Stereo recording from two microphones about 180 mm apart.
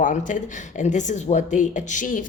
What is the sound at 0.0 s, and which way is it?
A woman's voice, 45° left (ahead or behind).